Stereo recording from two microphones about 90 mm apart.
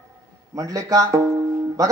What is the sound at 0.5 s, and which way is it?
Music, 40° right (ahead or behind).